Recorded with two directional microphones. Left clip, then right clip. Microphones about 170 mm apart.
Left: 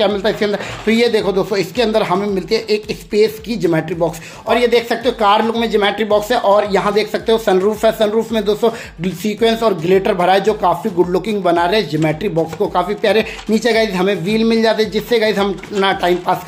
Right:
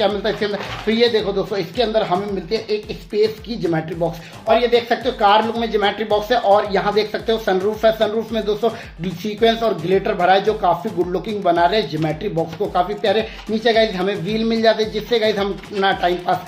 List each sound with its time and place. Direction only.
0.0 s speech: 25° left (ahead or behind)